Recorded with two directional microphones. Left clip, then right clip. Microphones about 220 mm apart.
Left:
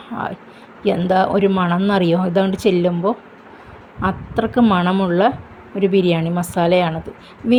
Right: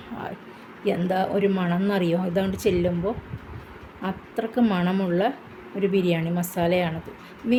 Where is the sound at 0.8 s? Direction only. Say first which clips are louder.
Left 8 dB; 20° left (ahead or behind).